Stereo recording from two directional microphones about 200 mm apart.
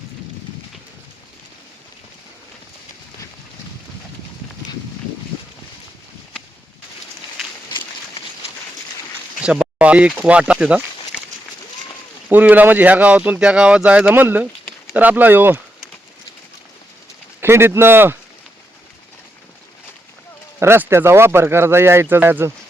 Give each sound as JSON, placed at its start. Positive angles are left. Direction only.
{"t": 7.7, "sound": "a sound", "side_deg": 25}
{"t": 9.4, "sound": "speech", "side_deg": -5}
{"t": 12.3, "sound": "speech", "side_deg": -10}
{"t": 17.4, "sound": "speech", "side_deg": -10}
{"t": 20.6, "sound": "speech", "side_deg": -10}